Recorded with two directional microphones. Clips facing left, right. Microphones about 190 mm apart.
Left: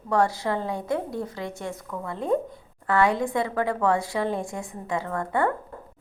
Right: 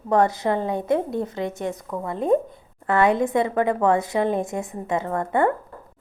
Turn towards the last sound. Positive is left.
turn(degrees=-20)  # may be behind; listen again after turning